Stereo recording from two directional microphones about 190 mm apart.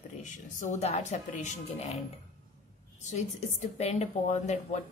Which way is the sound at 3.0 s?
40° left (ahead or behind).